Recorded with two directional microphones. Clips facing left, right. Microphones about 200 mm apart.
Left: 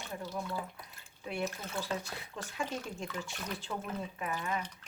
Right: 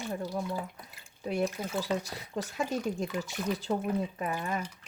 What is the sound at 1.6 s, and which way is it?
Speech, 35° right (ahead or behind).